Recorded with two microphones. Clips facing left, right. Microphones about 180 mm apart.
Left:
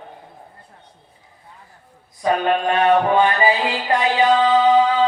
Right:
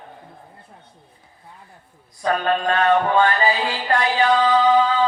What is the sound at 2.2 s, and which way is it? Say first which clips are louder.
Music: left 2 dB; 15° left (ahead or behind).